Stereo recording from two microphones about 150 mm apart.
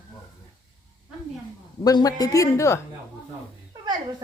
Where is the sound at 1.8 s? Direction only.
25° left (ahead or behind).